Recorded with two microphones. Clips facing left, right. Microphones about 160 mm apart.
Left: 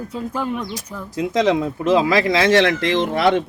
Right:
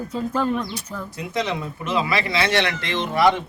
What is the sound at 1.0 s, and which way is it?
Speech, 90° left.